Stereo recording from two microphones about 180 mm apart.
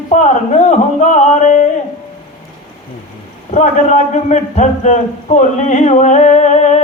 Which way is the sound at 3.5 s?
40° left (ahead or behind).